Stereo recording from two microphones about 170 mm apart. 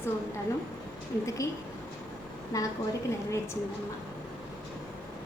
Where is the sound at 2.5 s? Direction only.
20° left (ahead or behind).